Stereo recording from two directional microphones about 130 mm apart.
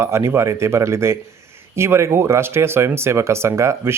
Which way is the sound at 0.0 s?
20° right (ahead or behind).